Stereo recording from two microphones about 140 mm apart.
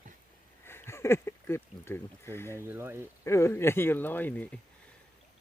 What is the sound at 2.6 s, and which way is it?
Speech, 15° right (ahead or behind).